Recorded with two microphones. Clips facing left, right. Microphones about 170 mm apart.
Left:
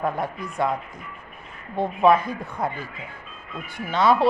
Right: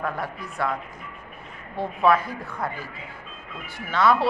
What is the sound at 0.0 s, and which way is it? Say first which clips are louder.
Speech: left 4 dB; 20° left (ahead or behind).